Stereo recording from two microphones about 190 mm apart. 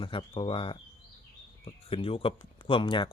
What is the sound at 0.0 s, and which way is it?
Speech, 25° left (ahead or behind).